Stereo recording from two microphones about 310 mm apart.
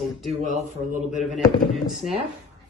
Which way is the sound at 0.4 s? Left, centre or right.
Right.